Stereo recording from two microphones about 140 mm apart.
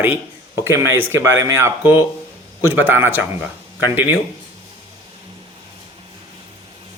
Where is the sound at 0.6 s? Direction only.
20° right (ahead or behind).